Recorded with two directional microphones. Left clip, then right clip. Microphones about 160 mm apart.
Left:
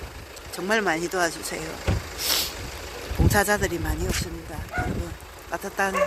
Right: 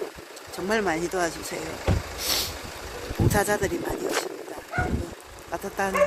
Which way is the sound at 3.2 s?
5° right (ahead or behind).